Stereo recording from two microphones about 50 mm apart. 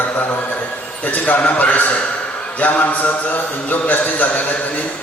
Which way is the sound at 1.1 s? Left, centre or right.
Left.